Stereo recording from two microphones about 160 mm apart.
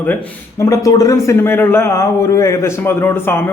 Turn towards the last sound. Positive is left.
turn(degrees=15)  # may be behind; listen again after turning